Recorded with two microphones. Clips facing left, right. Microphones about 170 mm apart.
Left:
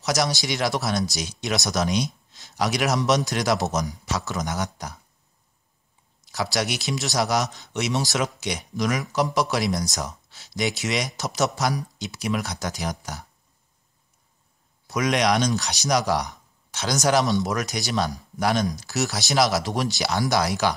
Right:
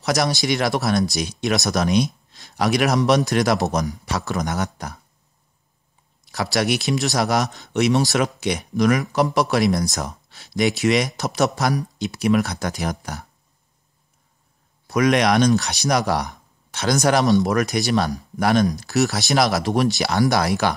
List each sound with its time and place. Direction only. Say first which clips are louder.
0.0 s speech: right 3 dB; 55° right (ahead or behind)
6.2 s speech: right 4 dB; 55° right (ahead or behind)
14.9 s speech: right 4 dB; 55° right (ahead or behind)